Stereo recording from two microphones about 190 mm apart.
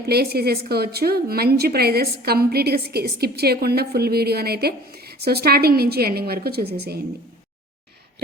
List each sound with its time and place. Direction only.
0.0 s speech: 55° right (ahead or behind)